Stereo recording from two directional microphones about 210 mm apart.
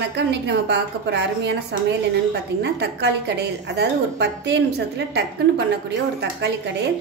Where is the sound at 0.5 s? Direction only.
55° right (ahead or behind).